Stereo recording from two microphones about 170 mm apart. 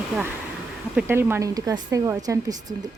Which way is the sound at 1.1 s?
15° right (ahead or behind).